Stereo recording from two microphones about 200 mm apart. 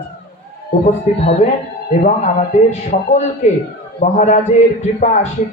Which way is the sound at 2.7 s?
35° left (ahead or behind).